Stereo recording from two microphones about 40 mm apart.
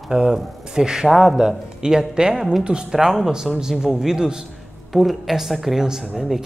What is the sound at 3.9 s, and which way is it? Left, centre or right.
Speech, centre.